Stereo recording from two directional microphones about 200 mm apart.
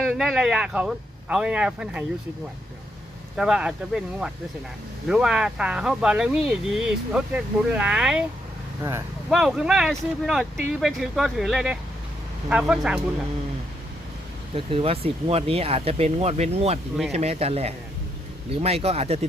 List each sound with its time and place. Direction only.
0.1 s speech: centre (ahead or behind)
3.3 s speech: 5° right (ahead or behind)
9.3 s speech: centre (ahead or behind)
14.5 s speech: 25° right (ahead or behind)